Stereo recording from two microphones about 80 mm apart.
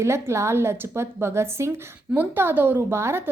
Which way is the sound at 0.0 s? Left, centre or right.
Right.